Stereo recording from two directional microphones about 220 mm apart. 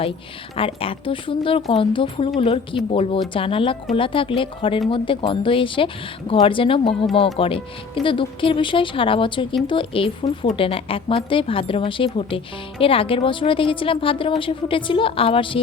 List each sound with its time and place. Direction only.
0.5 s speech: 25° left (ahead or behind)